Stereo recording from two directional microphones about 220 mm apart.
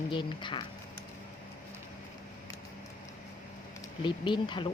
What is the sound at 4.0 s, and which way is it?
Speech, 20° left (ahead or behind).